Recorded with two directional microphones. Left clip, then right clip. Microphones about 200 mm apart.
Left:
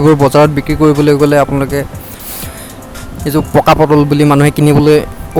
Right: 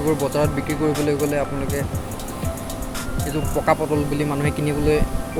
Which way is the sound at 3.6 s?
55° left (ahead or behind).